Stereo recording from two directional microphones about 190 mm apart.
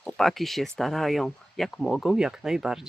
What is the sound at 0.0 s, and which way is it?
Speech, centre (ahead or behind).